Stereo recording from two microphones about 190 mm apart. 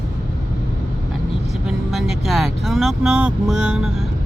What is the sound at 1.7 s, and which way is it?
Speech, centre (ahead or behind).